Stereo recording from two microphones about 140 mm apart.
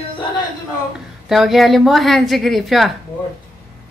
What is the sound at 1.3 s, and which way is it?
A woman's voice, centre (ahead or behind).